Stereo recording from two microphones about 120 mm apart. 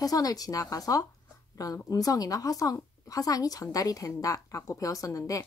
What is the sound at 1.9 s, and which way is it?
A woman's voice, 30° left (ahead or behind).